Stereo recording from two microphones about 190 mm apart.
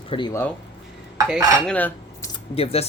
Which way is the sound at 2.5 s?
30° left (ahead or behind).